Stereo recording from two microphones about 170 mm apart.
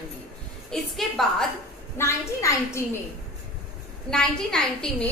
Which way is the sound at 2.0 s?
15° left (ahead or behind).